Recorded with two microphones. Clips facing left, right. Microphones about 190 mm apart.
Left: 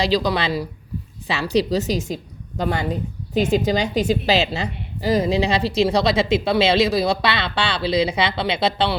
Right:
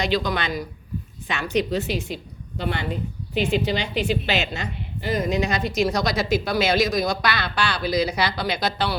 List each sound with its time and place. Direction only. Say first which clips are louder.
0.0 s a woman's voice: left 4 dB; 30° left (ahead or behind)